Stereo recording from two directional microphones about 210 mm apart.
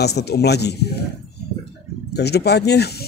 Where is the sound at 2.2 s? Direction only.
50° left (ahead or behind).